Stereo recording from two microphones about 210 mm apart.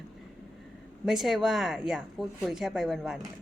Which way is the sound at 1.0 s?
Centre (ahead or behind).